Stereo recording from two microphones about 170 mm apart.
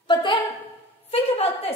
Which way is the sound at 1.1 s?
35° left (ahead or behind).